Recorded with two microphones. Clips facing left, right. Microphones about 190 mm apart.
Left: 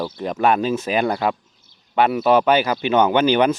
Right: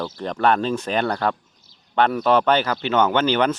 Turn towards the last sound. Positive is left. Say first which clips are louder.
# left 3 dB
turn(degrees=10)  # may be behind; listen again after turning